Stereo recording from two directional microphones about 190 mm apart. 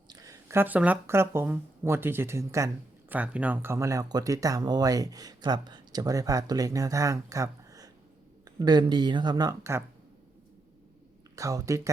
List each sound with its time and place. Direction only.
0.1 s speech: 15° right (ahead or behind)
11.3 s speech: 15° right (ahead or behind)